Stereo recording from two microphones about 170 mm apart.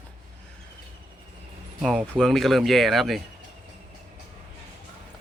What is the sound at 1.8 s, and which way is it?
Speech, centre (ahead or behind).